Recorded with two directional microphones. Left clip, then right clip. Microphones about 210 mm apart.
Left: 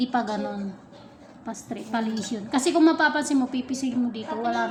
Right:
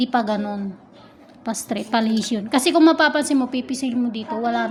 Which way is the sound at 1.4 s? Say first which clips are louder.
Right 9 dB; 45° right (ahead or behind).